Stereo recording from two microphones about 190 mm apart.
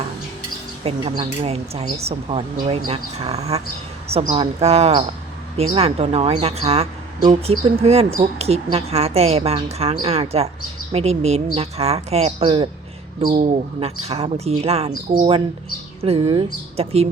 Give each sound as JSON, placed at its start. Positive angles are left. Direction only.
{"t": 0.9, "sound": "speech", "side_deg": -30}